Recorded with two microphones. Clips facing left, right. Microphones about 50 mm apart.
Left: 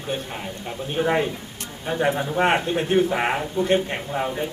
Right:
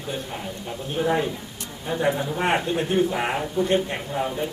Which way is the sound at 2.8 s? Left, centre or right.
Left.